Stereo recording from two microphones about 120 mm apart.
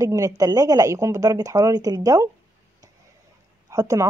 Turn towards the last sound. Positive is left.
turn(degrees=-30)  # may be behind; listen again after turning